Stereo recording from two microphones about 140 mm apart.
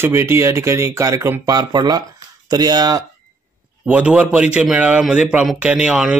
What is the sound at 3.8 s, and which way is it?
A man's voice, 10° right (ahead or behind).